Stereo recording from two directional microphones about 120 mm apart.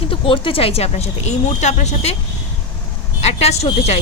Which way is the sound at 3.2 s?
65° left (ahead or behind).